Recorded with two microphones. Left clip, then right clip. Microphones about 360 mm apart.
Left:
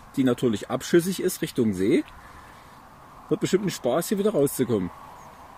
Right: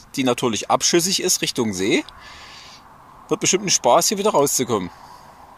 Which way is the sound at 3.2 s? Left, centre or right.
Right.